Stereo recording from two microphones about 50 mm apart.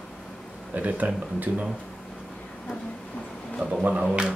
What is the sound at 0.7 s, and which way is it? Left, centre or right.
Speech, right.